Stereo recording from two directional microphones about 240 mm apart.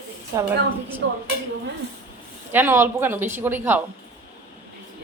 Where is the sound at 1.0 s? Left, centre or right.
Right.